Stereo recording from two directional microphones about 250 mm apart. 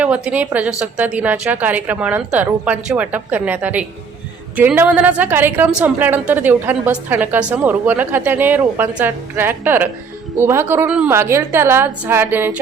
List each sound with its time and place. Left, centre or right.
0.0 s a woman's voice: centre